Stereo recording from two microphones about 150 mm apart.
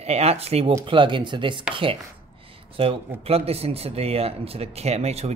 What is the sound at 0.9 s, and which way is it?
Speech, 35° right (ahead or behind).